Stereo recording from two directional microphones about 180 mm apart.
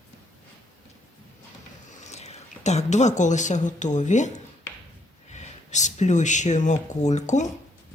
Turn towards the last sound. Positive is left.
turn(degrees=40)  # may be behind; listen again after turning